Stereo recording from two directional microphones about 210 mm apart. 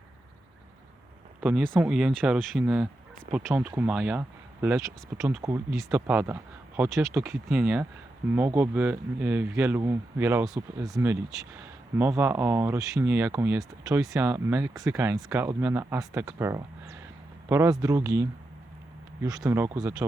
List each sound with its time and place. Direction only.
1.4 s speech: 5° right (ahead or behind)
19.4 s speech: 10° right (ahead or behind)